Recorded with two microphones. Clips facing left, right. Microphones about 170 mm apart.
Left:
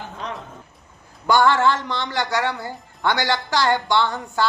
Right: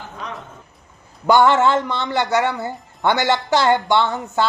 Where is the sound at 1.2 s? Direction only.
20° right (ahead or behind).